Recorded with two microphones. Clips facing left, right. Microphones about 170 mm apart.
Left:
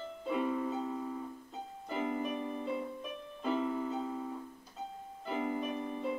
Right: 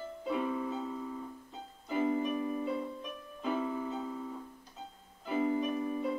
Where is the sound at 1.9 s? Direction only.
10° right (ahead or behind).